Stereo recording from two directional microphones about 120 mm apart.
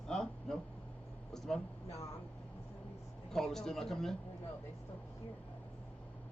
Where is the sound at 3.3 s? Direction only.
5° left (ahead or behind).